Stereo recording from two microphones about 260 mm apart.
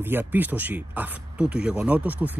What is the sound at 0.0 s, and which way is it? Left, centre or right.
Speech, centre.